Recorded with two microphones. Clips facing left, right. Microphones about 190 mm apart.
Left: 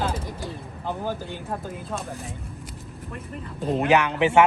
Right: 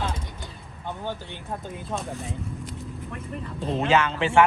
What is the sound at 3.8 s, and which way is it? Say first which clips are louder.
Speech: left 2 dB; 15° left (ahead or behind).